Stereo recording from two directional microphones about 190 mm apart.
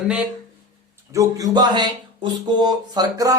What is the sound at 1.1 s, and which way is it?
Speech, 15° right (ahead or behind).